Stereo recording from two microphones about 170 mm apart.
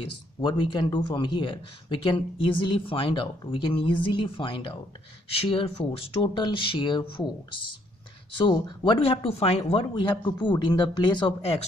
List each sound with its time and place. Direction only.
0.0 s speech: 30° left (ahead or behind)
8.4 s speech: 25° left (ahead or behind)